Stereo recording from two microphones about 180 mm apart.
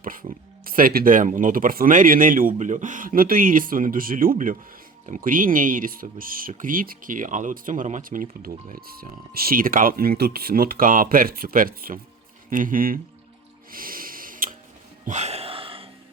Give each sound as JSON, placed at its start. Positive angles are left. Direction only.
{"t": 0.0, "sound": "speech", "side_deg": -50}
{"t": 13.7, "sound": "snort", "side_deg": -50}
{"t": 15.0, "sound": "a sound", "side_deg": -40}